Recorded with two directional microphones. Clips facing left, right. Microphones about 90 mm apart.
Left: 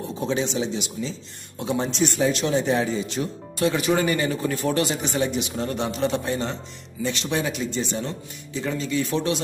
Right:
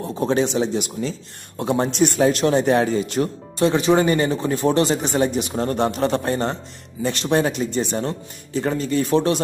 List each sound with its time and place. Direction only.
0.2 s a man's voice: 50° right (ahead or behind)
3.5 s a man's voice: 30° right (ahead or behind)